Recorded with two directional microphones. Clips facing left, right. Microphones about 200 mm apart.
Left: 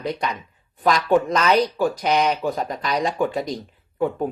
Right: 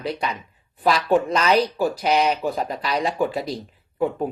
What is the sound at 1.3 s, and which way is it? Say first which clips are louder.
Speech: even; 30° right (ahead or behind).